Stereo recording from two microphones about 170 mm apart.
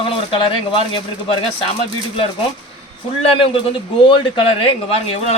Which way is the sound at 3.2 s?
35° left (ahead or behind).